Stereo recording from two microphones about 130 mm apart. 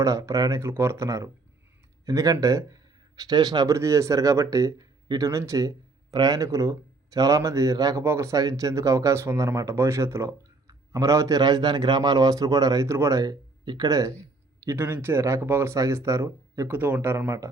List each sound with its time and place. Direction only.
0.0 s speech: 25° right (ahead or behind)